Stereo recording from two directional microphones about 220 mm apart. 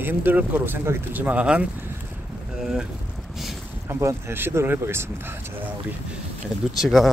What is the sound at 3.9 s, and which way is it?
Speech, 10° right (ahead or behind).